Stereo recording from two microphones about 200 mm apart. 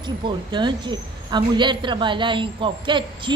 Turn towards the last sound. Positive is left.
turn(degrees=-25)  # may be behind; listen again after turning